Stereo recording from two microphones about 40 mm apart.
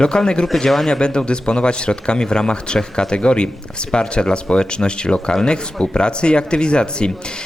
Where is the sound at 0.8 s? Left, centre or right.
Centre.